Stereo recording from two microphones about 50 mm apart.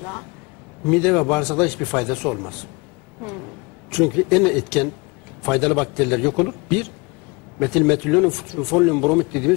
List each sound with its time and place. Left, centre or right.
0.8 s speech: centre
3.9 s speech: centre